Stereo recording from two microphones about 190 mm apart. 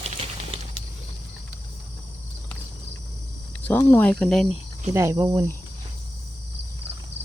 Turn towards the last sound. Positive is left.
turn(degrees=-20)  # may be behind; listen again after turning